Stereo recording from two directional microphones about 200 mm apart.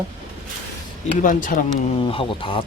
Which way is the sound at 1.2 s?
40° left (ahead or behind).